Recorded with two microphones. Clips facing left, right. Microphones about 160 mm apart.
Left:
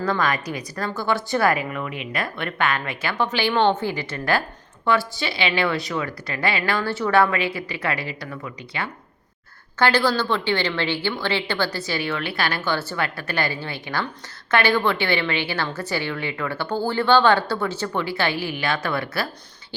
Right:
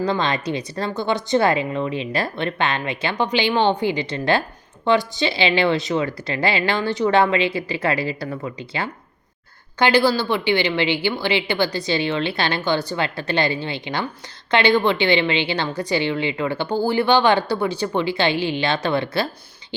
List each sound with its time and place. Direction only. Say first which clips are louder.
0.0 s a woman's voice: right 2 dB; 20° right (ahead or behind)
9.7 s a woman's voice: right 3 dB; 15° right (ahead or behind)